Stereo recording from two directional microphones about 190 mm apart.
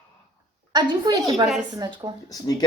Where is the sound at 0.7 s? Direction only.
20° right (ahead or behind).